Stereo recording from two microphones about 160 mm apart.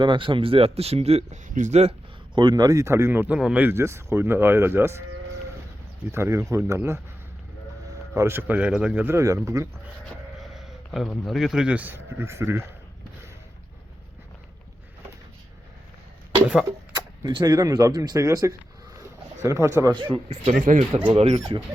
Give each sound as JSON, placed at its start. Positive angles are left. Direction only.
{"t": 0.0, "sound": "speech", "side_deg": -30}
{"t": 2.3, "sound": "speech", "side_deg": -25}
{"t": 6.1, "sound": "speech", "side_deg": -20}
{"t": 8.1, "sound": "speech", "side_deg": -15}
{"t": 10.4, "sound": "speech", "side_deg": 0}
{"t": 16.9, "sound": "speech", "side_deg": -25}
{"t": 20.3, "sound": "speech", "side_deg": -50}
{"t": 21.1, "sound": "speech", "side_deg": -35}